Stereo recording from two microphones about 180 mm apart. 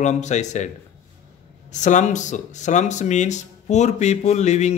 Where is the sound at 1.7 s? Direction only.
40° left (ahead or behind).